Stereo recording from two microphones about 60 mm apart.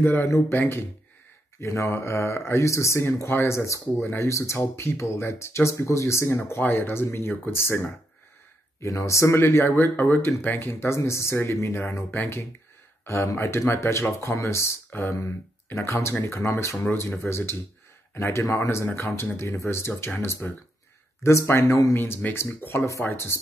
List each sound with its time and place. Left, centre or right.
0.0 s speech: left
1.6 s speech: left
3.8 s speech: left
8.7 s speech: left
9.4 s speech: left
11.0 s speech: left
13.0 s speech: left
17.3 s speech: left
18.1 s speech: left
18.4 s speech: left
21.9 s speech: left